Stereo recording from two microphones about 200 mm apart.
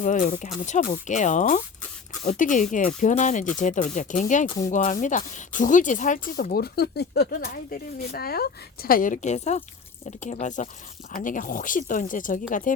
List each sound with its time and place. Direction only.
0.0 s speech: 40° left (ahead or behind)
4.4 s speech: 15° left (ahead or behind)
4.7 s speech: 40° left (ahead or behind)